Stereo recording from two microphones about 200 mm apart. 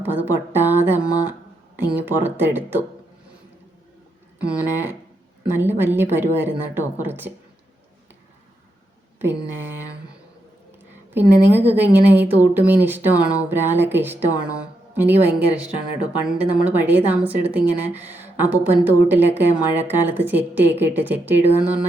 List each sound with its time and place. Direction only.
0.0 s a sound: 10° right (ahead or behind)
1.9 s speech: 10° right (ahead or behind)
4.6 s speech: 10° right (ahead or behind)
11.1 s speech: 10° right (ahead or behind)